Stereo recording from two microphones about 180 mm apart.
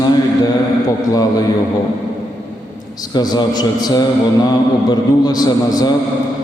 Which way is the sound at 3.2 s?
20° left (ahead or behind).